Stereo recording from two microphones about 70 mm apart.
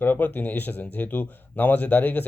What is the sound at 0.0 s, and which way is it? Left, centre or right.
A man's voice, left.